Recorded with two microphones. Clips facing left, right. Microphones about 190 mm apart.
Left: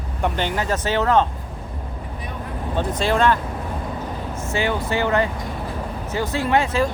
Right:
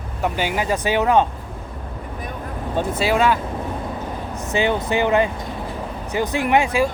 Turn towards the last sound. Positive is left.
turn(degrees=-15)  # may be behind; listen again after turning